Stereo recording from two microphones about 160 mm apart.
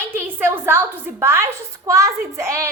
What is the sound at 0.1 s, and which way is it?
A woman's voice, 15° right (ahead or behind).